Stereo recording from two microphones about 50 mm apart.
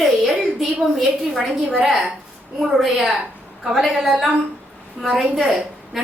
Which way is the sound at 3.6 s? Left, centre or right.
Centre.